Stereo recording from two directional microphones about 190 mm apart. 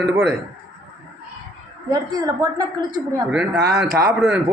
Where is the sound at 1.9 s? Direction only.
20° right (ahead or behind).